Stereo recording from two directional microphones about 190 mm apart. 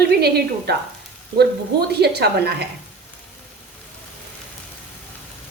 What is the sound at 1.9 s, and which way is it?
Speech, 60° right (ahead or behind).